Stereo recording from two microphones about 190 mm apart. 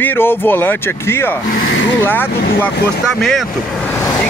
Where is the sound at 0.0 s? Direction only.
10° left (ahead or behind).